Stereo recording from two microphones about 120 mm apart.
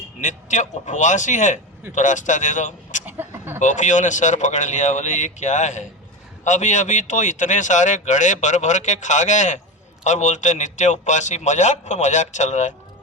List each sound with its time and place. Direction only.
0.2 s speech: 90° left
3.1 s a sound: 20° right (ahead or behind)
3.6 s a man's voice: 90° left